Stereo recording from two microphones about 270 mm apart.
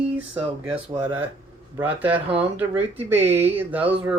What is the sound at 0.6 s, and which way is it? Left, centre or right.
A woman's voice, centre.